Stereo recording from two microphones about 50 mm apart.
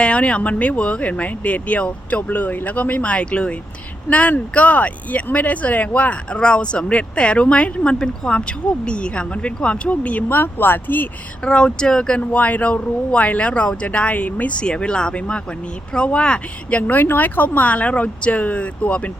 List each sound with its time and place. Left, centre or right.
0.0 s speech: left
11.4 s speech: centre
12.2 s speech: left
14.6 s speech: centre